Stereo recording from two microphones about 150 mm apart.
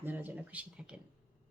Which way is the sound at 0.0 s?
10° right (ahead or behind).